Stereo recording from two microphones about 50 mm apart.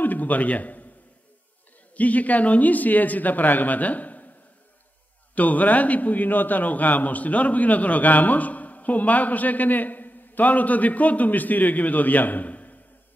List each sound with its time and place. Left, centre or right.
0.0 s a man's voice: left
2.0 s a man's voice: left
5.3 s a man's voice: left